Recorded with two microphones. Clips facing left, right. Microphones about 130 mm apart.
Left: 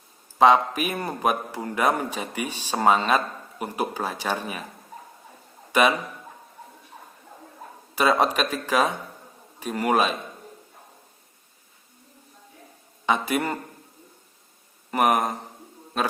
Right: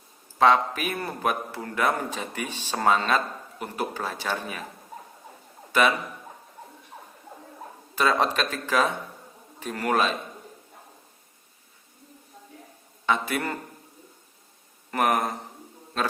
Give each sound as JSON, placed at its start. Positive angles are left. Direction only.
{"t": 0.3, "sound": "a man's voice", "side_deg": 15}
{"t": 7.9, "sound": "a man's voice", "side_deg": 15}
{"t": 13.1, "sound": "a man's voice", "side_deg": 15}
{"t": 14.8, "sound": "speech", "side_deg": 15}